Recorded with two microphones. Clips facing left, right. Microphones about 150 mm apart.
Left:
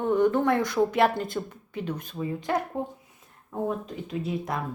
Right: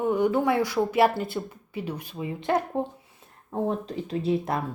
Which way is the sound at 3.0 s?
30° right (ahead or behind).